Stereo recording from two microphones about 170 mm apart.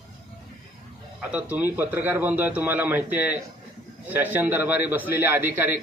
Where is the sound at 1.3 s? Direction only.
10° right (ahead or behind).